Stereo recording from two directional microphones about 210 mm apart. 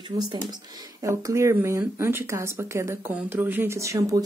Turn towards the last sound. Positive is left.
turn(degrees=-15)  # may be behind; listen again after turning